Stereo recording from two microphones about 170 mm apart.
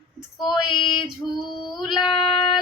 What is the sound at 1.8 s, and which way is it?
Child singing, centre (ahead or behind).